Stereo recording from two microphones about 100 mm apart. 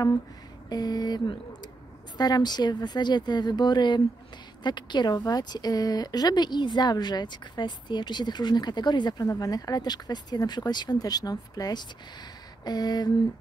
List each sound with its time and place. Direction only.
0.7 s speech: 45° left (ahead or behind)
9.3 s speech: 35° left (ahead or behind)